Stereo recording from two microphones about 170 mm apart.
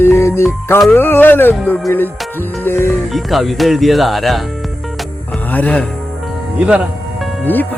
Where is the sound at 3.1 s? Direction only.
Centre (ahead or behind).